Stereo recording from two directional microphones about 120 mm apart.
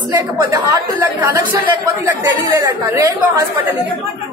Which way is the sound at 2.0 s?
30° right (ahead or behind).